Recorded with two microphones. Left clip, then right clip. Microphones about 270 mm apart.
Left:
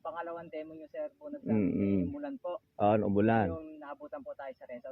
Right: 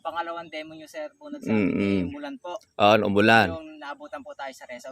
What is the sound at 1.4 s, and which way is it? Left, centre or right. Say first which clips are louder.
Mantra: right 7 dB; right.